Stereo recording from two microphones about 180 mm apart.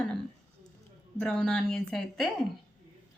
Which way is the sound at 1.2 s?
5° left (ahead or behind).